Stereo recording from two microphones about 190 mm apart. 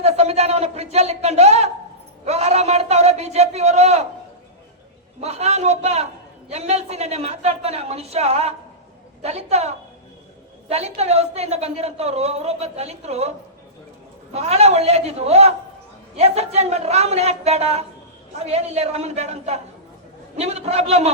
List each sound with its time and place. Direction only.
0.0 s a woman's voice: 35° right (ahead or behind)
5.2 s a woman's voice: 35° right (ahead or behind)
14.3 s a woman's voice: 35° right (ahead or behind)